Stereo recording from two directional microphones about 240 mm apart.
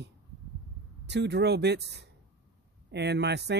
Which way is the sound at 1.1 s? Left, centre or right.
Right.